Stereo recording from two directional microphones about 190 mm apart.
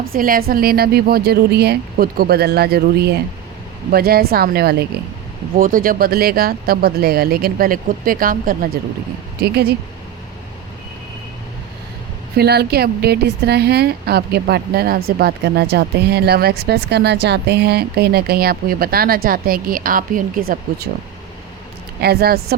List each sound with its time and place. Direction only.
0.1 s speech: 50° right (ahead or behind)
12.4 s speech: 55° right (ahead or behind)
22.0 s speech: 55° right (ahead or behind)